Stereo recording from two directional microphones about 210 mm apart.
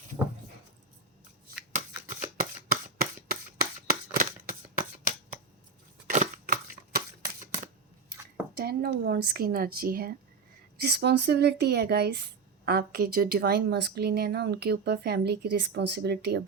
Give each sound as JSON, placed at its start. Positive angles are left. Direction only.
{"t": 2.4, "sound": "shuffling cards", "side_deg": -45}
{"t": 6.1, "sound": "a sound", "side_deg": -40}
{"t": 8.5, "sound": "speech", "side_deg": -50}